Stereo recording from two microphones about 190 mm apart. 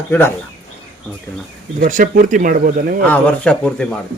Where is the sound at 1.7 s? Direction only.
45° right (ahead or behind).